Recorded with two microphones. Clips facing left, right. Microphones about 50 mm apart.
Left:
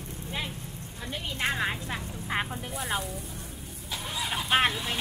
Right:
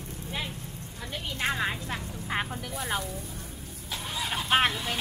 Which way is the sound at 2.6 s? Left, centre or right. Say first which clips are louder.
Even; left.